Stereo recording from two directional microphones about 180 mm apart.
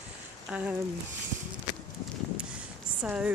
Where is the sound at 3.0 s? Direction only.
5° right (ahead or behind).